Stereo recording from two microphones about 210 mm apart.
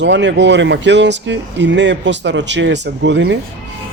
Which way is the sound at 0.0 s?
60° right (ahead or behind).